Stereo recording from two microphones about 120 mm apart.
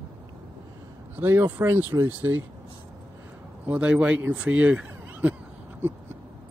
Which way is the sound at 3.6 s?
10° right (ahead or behind).